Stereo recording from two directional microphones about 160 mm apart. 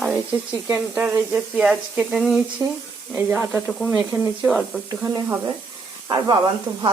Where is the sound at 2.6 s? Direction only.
15° right (ahead or behind).